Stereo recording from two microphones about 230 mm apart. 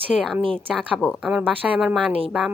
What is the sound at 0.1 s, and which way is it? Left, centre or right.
Speech, centre.